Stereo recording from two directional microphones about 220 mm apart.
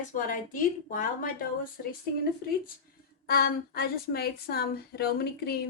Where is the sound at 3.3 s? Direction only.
45° left (ahead or behind).